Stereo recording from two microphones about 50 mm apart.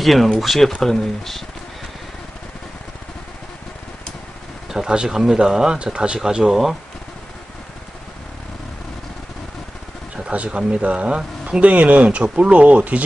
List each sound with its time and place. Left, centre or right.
0.0 s speech: centre
4.6 s speech: centre
10.1 s speech: right